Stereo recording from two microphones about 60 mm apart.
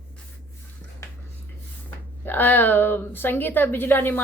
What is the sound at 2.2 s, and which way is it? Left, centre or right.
A woman's voice, left.